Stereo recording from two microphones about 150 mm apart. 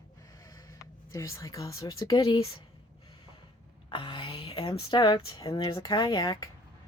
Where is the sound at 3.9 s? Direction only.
35° left (ahead or behind).